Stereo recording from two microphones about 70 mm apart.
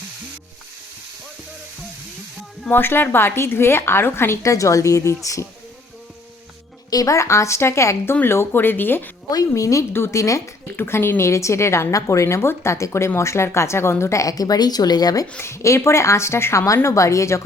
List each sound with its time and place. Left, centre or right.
2.6 s a woman's voice: left
6.9 s a woman's voice: left
9.3 s a woman's voice: left
10.8 s a woman's voice: left
15.4 s a woman's voice: left